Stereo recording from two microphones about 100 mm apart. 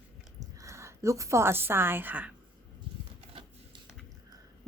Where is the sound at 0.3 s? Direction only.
30° right (ahead or behind).